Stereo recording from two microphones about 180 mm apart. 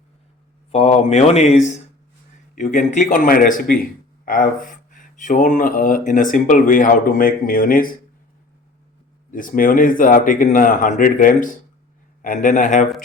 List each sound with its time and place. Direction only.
0.7 s speech: 35° left (ahead or behind)
2.6 s speech: 45° left (ahead or behind)
9.3 s speech: 50° left (ahead or behind)